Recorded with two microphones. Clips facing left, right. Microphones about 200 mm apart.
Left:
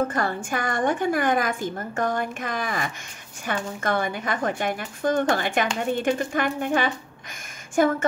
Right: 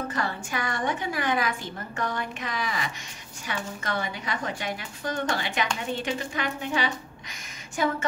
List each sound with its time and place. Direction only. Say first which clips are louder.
0.1 s a woman's voice: left 4 dB; 50° left (ahead or behind)